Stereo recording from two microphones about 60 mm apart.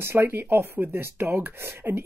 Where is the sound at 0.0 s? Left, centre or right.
Right.